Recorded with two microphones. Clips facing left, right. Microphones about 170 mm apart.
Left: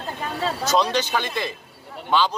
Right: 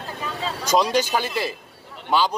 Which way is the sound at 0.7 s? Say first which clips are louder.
Right 3 dB; 10° right (ahead or behind).